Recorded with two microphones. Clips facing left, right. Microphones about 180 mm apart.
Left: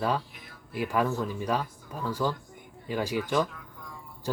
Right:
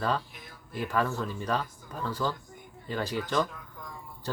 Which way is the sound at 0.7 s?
10° left (ahead or behind).